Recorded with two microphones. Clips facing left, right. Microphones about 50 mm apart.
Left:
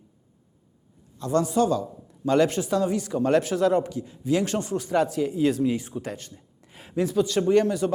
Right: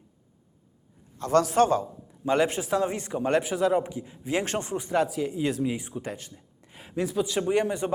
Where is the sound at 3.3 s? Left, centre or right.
Centre.